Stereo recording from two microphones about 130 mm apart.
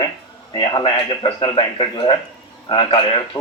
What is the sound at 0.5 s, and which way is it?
Speech, 35° left (ahead or behind).